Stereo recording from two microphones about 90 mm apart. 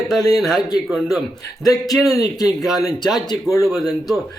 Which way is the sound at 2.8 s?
50° left (ahead or behind).